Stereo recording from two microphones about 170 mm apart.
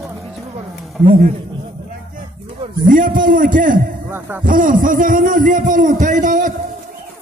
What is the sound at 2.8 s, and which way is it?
A man's voice, 55° right (ahead or behind).